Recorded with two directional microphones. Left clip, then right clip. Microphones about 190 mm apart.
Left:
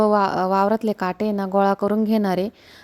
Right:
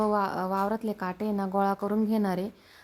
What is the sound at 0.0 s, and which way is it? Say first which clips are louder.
Speech: left 9 dB; 35° left (ahead or behind).